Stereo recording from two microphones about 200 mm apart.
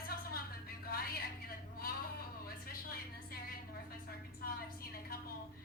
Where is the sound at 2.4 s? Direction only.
50° left (ahead or behind).